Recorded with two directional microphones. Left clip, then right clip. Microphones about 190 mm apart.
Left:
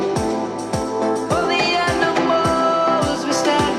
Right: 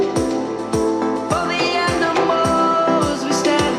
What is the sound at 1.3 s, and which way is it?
Music, centre (ahead or behind).